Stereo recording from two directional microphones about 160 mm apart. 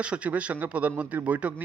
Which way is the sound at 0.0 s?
10° right (ahead or behind).